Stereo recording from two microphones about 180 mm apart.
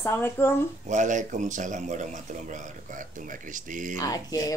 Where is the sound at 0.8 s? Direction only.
45° right (ahead or behind).